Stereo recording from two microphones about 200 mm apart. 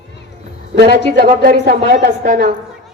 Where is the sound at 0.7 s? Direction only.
50° right (ahead or behind).